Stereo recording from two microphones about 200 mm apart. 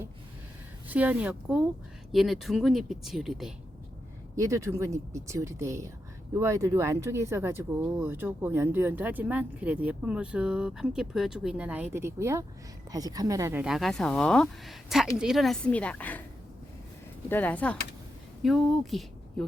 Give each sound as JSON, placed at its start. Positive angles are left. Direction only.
{"t": 0.9, "sound": "speech", "side_deg": -10}
{"t": 4.4, "sound": "speech", "side_deg": -15}
{"t": 17.2, "sound": "speech", "side_deg": 10}